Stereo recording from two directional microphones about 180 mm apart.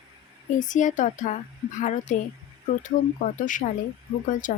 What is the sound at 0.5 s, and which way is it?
Speech, 45° left (ahead or behind).